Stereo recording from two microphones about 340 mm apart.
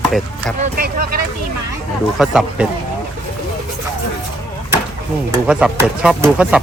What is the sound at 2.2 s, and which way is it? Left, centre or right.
Speech, centre.